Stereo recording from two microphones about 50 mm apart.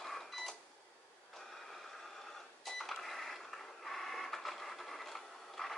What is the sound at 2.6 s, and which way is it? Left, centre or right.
Cash register, centre.